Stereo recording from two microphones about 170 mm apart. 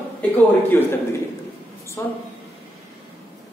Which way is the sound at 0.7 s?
15° left (ahead or behind).